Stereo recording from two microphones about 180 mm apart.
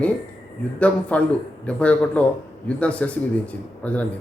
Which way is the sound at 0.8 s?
5° left (ahead or behind).